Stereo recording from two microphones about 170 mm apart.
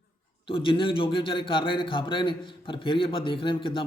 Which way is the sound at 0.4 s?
30° left (ahead or behind).